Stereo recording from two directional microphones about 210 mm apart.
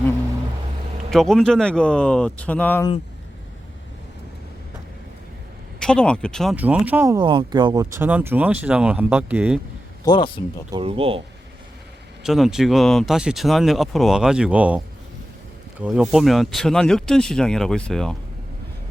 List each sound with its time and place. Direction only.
1.1 s speech: centre (ahead or behind)
5.8 s speech: 5° left (ahead or behind)
10.0 s a man's voice: 20° left (ahead or behind)
10.7 s speech: 25° right (ahead or behind)
12.2 s speech: centre (ahead or behind)
15.8 s speech: 5° right (ahead or behind)